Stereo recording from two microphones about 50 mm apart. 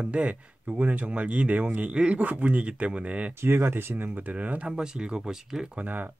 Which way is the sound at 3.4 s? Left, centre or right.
Right.